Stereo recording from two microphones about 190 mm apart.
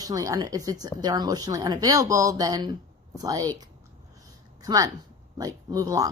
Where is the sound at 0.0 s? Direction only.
20° right (ahead or behind).